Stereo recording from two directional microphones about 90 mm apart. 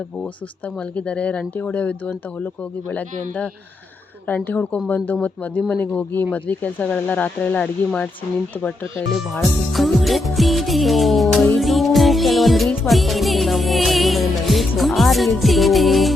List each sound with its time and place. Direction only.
0.9 s speech: 15° left (ahead or behind)
9.4 s music: centre (ahead or behind)